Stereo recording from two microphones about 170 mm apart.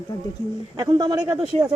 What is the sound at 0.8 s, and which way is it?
Speech, 20° right (ahead or behind).